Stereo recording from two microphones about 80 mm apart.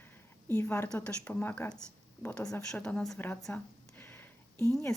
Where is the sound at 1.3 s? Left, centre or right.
Left.